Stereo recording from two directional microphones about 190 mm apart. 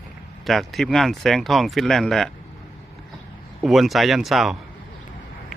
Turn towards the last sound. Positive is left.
turn(degrees=0)  # may be behind; listen again after turning